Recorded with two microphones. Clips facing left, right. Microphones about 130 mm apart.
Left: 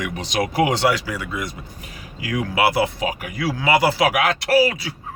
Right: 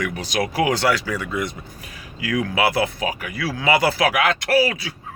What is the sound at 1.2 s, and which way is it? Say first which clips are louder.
Speech: right 2 dB; 5° left (ahead or behind).